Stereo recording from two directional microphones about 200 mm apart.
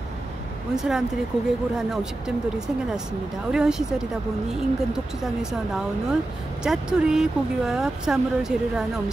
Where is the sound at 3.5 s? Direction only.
5° right (ahead or behind).